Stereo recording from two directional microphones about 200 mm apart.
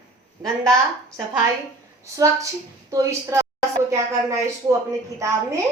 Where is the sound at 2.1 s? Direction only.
15° right (ahead or behind).